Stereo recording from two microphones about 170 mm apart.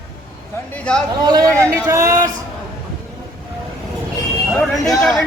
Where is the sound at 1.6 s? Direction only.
20° right (ahead or behind).